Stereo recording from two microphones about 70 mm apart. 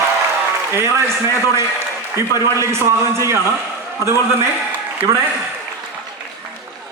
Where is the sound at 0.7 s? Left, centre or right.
Right.